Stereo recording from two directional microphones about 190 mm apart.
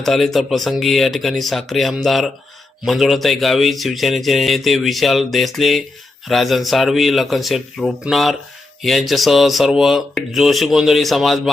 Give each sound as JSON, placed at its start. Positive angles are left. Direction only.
{"t": 0.0, "sound": "speech", "side_deg": 0}